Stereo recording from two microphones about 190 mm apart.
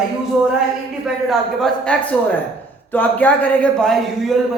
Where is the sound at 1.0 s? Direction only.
Centre (ahead or behind).